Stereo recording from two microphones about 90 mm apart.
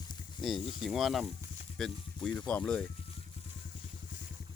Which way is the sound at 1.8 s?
5° left (ahead or behind).